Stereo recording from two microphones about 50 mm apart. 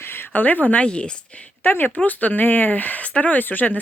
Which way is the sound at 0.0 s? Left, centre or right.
Left.